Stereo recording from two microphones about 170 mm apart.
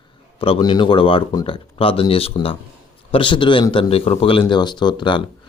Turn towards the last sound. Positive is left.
turn(degrees=30)  # may be behind; listen again after turning